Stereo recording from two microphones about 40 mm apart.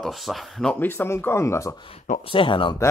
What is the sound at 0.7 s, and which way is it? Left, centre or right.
Speech, left.